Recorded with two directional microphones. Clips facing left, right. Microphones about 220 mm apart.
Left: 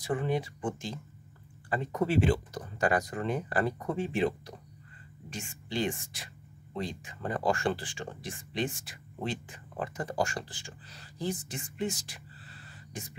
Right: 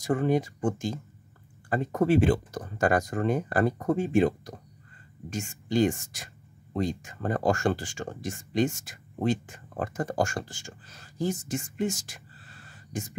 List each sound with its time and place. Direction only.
0.0 s speech: 45° right (ahead or behind)